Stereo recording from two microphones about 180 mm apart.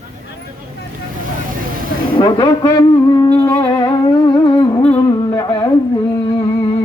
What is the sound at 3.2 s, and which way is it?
Music, 20° left (ahead or behind).